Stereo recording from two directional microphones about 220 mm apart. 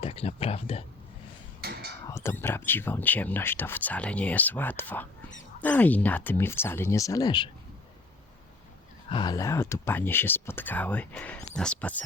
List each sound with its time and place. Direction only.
0.0 s speech: 25° left (ahead or behind)
1.6 s a sound: 45° right (ahead or behind)
2.0 s speech: 10° left (ahead or behind)
9.0 s speech: 20° left (ahead or behind)